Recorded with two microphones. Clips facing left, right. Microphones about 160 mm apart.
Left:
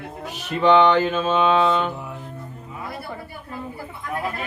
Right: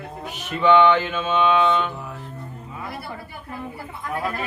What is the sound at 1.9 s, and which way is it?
Music, 20° left (ahead or behind).